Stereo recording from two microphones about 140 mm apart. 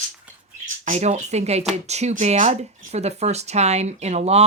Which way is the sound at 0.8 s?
55° right (ahead or behind).